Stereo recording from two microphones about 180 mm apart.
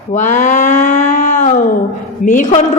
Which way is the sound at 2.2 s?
45° left (ahead or behind).